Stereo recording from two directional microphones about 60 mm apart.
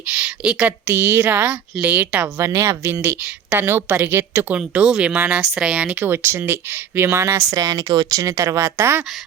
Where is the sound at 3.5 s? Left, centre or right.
Right.